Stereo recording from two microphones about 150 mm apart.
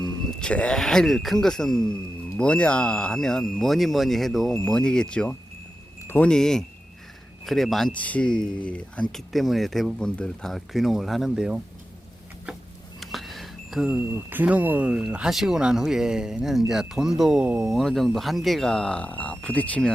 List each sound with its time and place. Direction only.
0.3 s speech: 5° left (ahead or behind)
13.0 s speech: centre (ahead or behind)